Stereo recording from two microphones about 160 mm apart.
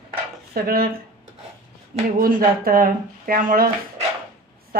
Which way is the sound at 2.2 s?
65° right (ahead or behind).